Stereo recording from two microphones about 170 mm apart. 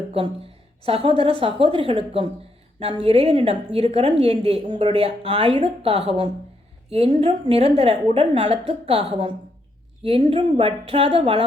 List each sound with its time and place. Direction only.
0.9 s a woman's voice: 35° right (ahead or behind)